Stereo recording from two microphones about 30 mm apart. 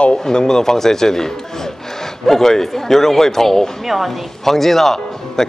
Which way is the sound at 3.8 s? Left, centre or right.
Centre.